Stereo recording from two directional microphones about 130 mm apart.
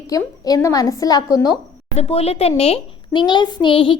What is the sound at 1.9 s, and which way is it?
A child's voice, 55° left (ahead or behind).